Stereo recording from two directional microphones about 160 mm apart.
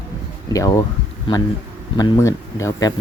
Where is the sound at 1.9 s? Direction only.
30° left (ahead or behind).